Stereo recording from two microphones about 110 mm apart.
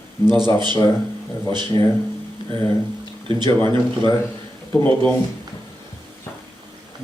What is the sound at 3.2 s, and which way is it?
Speech, 40° right (ahead or behind).